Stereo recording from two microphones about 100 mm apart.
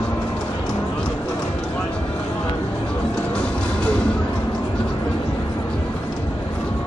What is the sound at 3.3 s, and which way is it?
Music, 15° left (ahead or behind).